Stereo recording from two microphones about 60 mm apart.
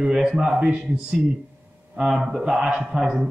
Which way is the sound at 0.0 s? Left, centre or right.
Centre.